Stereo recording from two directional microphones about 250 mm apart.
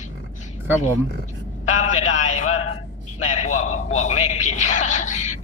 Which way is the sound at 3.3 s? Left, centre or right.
Left.